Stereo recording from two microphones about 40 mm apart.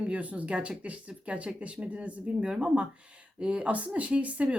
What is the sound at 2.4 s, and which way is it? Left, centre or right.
Speech, right.